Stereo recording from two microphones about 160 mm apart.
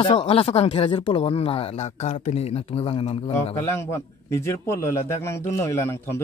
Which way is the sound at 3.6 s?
15° left (ahead or behind).